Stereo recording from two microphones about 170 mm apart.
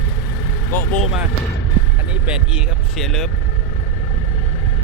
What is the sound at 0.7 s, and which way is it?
Speech, 10° left (ahead or behind).